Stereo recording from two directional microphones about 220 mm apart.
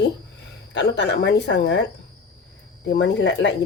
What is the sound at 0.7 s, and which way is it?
Speech, 50° left (ahead or behind).